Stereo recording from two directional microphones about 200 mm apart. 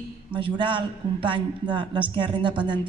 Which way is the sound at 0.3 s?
25° right (ahead or behind).